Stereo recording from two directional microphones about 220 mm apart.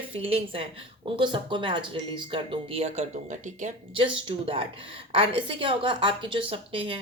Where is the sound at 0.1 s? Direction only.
25° right (ahead or behind).